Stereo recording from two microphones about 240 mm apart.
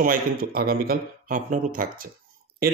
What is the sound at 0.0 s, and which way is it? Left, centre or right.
A man's voice, right.